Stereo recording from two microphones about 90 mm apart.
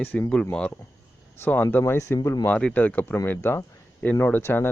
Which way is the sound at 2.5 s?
15° left (ahead or behind).